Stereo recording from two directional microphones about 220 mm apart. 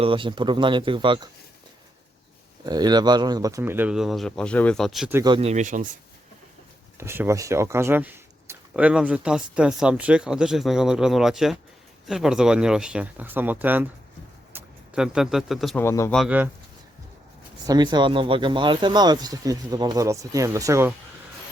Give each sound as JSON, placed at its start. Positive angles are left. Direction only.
{"t": 0.0, "sound": "speech", "side_deg": -25}
{"t": 2.6, "sound": "speech", "side_deg": -20}
{"t": 5.2, "sound": "speech", "side_deg": -25}
{"t": 7.0, "sound": "speech", "side_deg": -10}
{"t": 15.8, "sound": "speech", "side_deg": 10}
{"t": 16.1, "sound": "speech", "side_deg": -5}
{"t": 17.7, "sound": "speech", "side_deg": -20}